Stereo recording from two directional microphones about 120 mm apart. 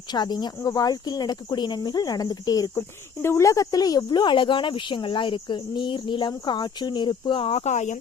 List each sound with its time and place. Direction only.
0.1 s speech: 35° left (ahead or behind)
2.7 s speech: 20° left (ahead or behind); by 7.6 s 45° left (ahead or behind)
7.6 s speech: 75° left (ahead or behind)